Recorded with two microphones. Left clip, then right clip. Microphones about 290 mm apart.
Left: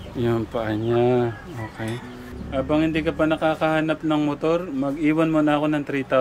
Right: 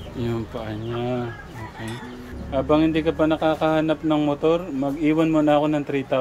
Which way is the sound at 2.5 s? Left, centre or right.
Centre.